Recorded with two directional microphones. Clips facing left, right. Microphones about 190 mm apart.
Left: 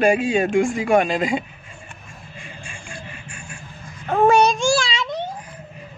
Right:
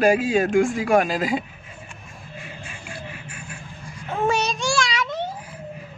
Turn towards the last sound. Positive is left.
turn(degrees=30)  # may be behind; listen again after turning